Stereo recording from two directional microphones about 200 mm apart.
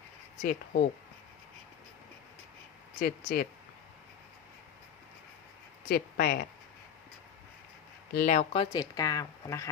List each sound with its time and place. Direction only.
0.4 s speech: 50° left (ahead or behind)
3.0 s speech: 45° left (ahead or behind)
5.9 s speech: 50° left (ahead or behind)
8.1 s speech: 40° left (ahead or behind); by 9.6 s 15° left (ahead or behind)